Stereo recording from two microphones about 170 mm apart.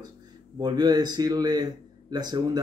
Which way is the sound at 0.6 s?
25° right (ahead or behind).